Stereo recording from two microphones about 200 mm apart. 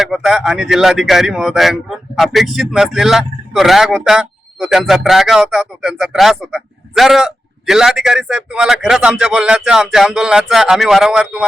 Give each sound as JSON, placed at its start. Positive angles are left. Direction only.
{"t": 0.0, "sound": "speech", "side_deg": 0}